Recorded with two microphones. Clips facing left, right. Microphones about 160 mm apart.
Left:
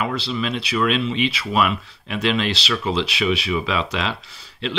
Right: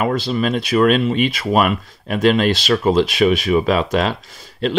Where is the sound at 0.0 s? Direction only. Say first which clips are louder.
Right 6 dB; 45° right (ahead or behind).